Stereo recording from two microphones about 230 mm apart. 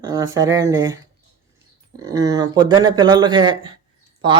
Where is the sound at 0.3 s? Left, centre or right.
Centre.